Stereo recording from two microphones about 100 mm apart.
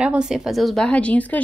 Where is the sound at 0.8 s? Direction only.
15° left (ahead or behind).